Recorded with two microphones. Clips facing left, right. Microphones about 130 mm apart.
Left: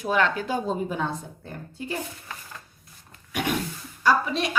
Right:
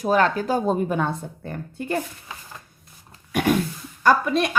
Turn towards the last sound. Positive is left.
turn(degrees=-50)  # may be behind; listen again after turning